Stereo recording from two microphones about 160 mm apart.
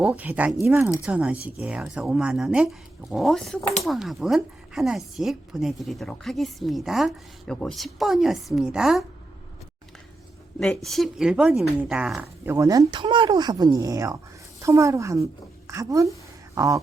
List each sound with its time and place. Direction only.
0.0 s a woman's voice: 10° right (ahead or behind)
10.8 s a woman's voice: centre (ahead or behind)
12.5 s a woman's voice: 20° right (ahead or behind)